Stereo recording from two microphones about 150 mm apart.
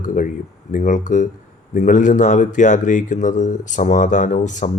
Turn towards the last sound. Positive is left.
turn(degrees=55)  # may be behind; listen again after turning